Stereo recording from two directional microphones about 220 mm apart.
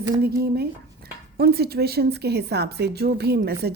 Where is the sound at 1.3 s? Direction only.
45° right (ahead or behind).